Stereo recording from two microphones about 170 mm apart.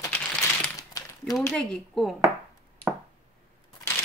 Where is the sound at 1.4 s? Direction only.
5° left (ahead or behind).